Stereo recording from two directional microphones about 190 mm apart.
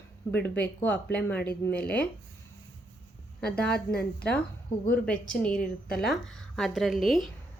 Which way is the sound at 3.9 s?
55° left (ahead or behind).